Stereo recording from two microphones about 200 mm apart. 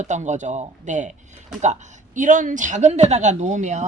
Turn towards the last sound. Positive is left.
turn(degrees=-35)  # may be behind; listen again after turning